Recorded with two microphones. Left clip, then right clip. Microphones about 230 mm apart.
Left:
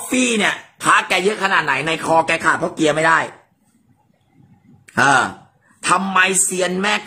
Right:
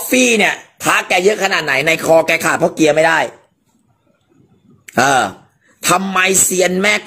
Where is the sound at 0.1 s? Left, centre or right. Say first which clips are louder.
Right 5 dB; centre.